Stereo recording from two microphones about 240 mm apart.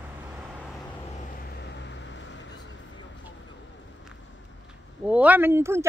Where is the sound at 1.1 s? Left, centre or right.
Left.